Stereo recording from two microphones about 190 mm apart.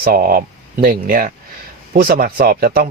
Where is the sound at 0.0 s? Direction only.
50° right (ahead or behind).